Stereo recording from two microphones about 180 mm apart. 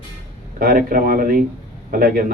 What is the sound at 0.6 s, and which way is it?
A man's voice, 55° right (ahead or behind).